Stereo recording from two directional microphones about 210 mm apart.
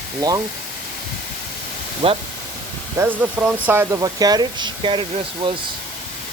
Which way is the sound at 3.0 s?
10° right (ahead or behind).